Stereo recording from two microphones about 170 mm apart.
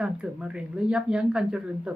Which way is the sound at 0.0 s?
5° right (ahead or behind).